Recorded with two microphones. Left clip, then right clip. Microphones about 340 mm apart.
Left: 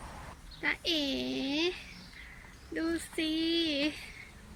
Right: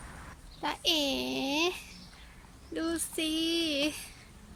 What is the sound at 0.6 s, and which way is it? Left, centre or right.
Speech, centre.